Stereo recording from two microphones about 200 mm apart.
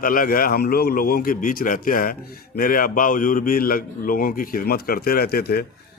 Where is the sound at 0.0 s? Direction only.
45° left (ahead or behind).